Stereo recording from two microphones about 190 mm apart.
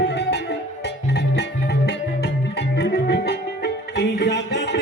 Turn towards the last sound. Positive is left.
turn(degrees=65)  # may be behind; listen again after turning